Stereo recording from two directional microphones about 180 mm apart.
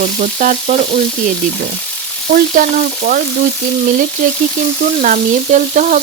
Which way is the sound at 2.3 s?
50° right (ahead or behind).